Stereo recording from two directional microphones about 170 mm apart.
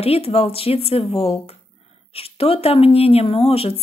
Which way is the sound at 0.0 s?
35° left (ahead or behind).